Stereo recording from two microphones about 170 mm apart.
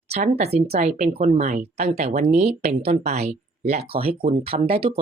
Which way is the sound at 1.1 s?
35° right (ahead or behind).